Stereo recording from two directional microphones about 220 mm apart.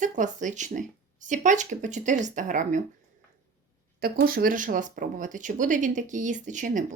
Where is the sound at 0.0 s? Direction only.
35° right (ahead or behind).